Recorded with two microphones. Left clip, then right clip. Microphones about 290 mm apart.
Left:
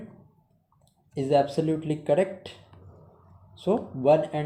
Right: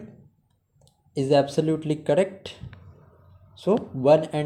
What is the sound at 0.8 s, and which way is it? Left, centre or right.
Speech, right.